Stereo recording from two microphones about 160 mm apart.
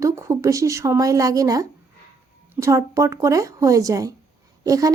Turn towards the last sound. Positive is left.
turn(degrees=-20)  # may be behind; listen again after turning